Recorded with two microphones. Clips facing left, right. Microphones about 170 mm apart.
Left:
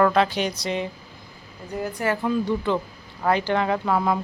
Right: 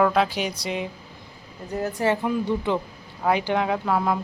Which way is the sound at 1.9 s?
25° right (ahead or behind).